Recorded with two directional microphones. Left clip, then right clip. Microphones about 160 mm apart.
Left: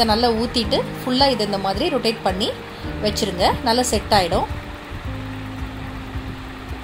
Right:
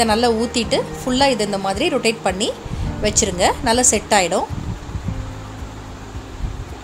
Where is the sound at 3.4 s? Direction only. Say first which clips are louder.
Right 1 dB; 15° right (ahead or behind).